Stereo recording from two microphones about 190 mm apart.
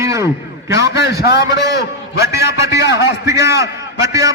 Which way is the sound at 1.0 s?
60° left (ahead or behind).